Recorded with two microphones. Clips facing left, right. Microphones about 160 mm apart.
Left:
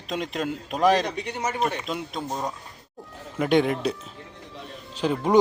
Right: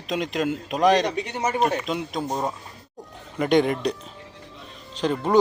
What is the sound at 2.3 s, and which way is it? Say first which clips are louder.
Speech: right 3 dB; 25° right (ahead or behind).